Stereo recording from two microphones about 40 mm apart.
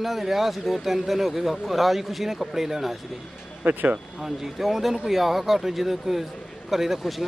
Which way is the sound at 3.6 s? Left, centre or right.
Right.